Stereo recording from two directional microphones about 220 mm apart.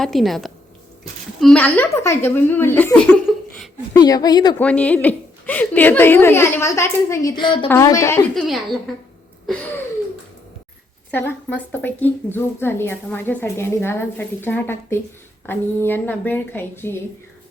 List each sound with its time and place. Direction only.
0.0 s a woman's voice: centre (ahead or behind)
3.9 s a woman's voice: 15° left (ahead or behind)
4.6 s a woman's voice: 5° left (ahead or behind)
8.4 s speech: centre (ahead or behind)
11.1 s a woman's voice: 10° left (ahead or behind)